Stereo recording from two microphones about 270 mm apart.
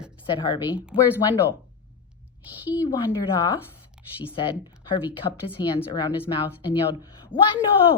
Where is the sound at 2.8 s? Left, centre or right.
Centre.